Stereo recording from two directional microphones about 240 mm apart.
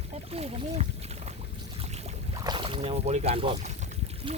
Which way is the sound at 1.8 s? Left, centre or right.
Right.